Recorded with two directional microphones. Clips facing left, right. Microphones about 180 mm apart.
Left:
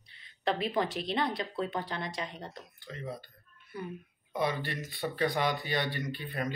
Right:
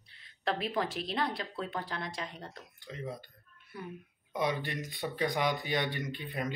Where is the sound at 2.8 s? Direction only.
15° right (ahead or behind).